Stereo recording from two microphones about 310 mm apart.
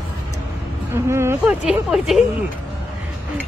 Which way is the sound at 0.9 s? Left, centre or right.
Centre.